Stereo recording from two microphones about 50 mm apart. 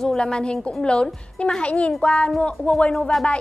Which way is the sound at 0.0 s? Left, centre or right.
Centre.